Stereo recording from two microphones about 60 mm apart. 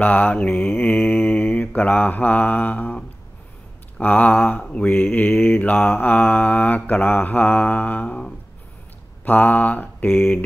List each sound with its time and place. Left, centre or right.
0.0 s mantra: left
4.0 s mantra: left